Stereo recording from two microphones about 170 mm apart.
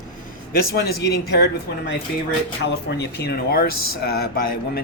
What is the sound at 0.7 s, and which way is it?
Speech, 70° left (ahead or behind).